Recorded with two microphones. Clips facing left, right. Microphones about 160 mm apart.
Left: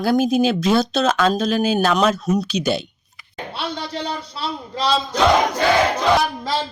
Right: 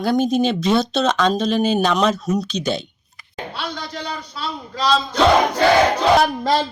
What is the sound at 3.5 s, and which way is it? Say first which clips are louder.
Speech: left 3 dB; 30° left (ahead or behind).